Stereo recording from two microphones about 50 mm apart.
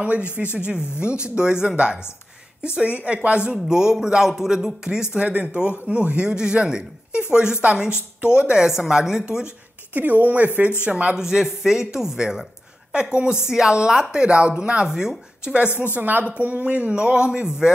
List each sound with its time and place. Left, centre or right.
0.0 s a man's voice: right
3.5 s speech: centre
5.1 s a man's voice: right
9.9 s a man's voice: right
11.1 s speech: centre
12.9 s a man's voice: centre
14.9 s speech: centre
15.9 s a man's voice: right; by 17.7 s centre